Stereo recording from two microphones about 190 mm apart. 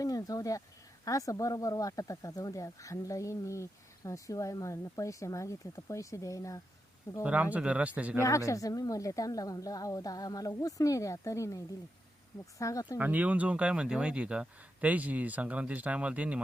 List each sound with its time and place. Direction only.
0.0 s a sound: 20° left (ahead or behind)
1.0 s speech: 15° left (ahead or behind)
7.2 s speech: 5° right (ahead or behind)
8.2 s speech: 15° left (ahead or behind)
13.0 s speech: 10° right (ahead or behind)